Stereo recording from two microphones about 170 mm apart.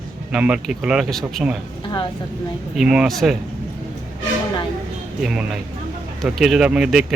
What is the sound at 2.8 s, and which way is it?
Speech, 5° right (ahead or behind).